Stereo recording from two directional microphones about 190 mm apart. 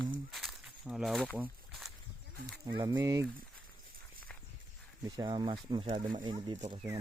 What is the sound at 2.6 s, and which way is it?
Speech, 25° right (ahead or behind).